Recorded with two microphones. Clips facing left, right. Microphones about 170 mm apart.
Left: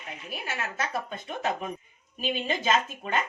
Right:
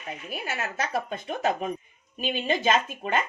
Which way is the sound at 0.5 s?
45° right (ahead or behind).